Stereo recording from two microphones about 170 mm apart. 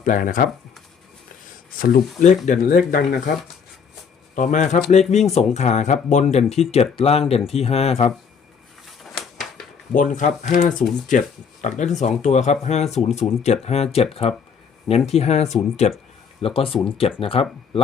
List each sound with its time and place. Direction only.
0.0 s speech: 50° left (ahead or behind)
1.8 s speech: 50° left (ahead or behind)
4.4 s speech: 45° left (ahead or behind)
9.9 s speech: 50° left (ahead or behind)